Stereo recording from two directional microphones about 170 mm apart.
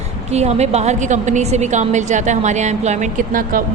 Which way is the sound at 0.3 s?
40° right (ahead or behind).